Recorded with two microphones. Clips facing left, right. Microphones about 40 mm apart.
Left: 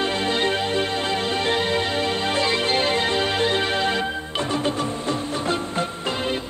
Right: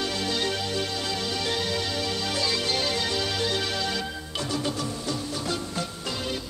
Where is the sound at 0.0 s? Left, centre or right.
Left.